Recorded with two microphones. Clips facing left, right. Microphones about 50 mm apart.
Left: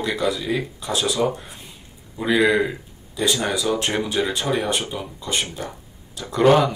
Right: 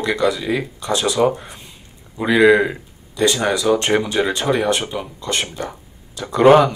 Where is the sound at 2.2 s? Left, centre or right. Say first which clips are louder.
Right 6 dB; centre.